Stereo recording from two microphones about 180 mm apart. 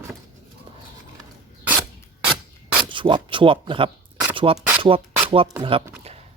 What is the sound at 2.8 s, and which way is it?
Speech, 25° right (ahead or behind).